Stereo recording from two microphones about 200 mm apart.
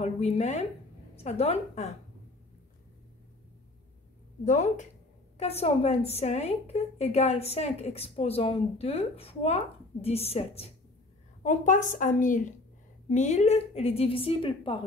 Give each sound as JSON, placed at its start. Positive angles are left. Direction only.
{"t": 0.0, "sound": "a woman's voice", "side_deg": 35}
{"t": 4.5, "sound": "a woman's voice", "side_deg": 35}